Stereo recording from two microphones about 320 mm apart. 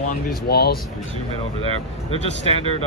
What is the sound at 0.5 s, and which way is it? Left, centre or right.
Speech, left.